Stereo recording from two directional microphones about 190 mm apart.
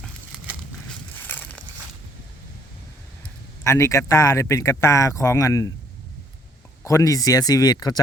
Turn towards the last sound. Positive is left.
turn(degrees=20)  # may be behind; listen again after turning